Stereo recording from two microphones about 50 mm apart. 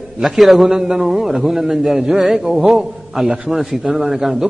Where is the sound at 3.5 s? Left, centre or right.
Centre.